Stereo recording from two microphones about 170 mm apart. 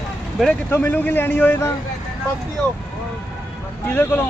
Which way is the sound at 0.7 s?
15° left (ahead or behind).